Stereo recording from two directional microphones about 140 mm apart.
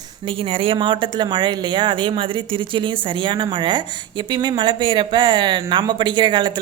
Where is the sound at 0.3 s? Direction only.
40° right (ahead or behind).